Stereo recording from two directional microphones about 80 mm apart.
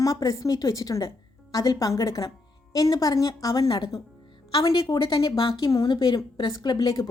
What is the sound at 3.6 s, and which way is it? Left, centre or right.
Speech, left.